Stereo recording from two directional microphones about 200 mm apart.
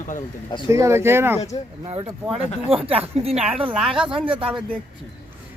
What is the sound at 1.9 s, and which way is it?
Speech, 30° right (ahead or behind).